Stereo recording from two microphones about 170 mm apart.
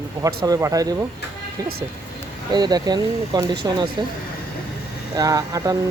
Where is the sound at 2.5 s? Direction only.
25° right (ahead or behind).